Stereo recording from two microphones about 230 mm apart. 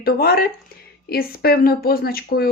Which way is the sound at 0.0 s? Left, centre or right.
Left.